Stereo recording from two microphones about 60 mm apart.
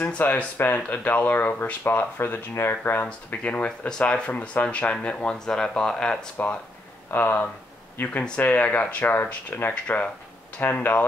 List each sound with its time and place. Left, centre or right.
0.2 s speech: left; by 6.1 s centre
6.4 s speech: left